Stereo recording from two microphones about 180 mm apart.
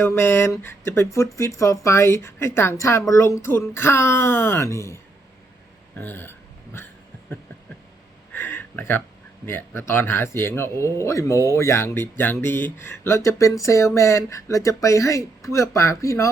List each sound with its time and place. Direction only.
0.0 s speech: 15° left (ahead or behind)
6.0 s speech: 10° left (ahead or behind)
8.3 s a sound: 10° left (ahead or behind)
9.5 s speech: 15° left (ahead or behind)